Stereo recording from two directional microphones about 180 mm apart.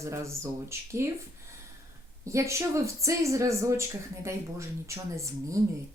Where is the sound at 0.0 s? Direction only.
15° right (ahead or behind).